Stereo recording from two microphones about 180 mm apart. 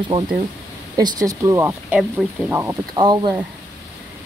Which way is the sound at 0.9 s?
20° right (ahead or behind).